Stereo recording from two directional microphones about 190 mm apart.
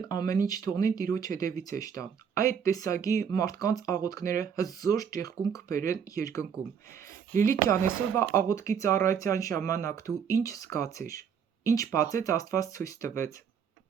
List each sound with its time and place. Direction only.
0.0 s speech: 20° left (ahead or behind)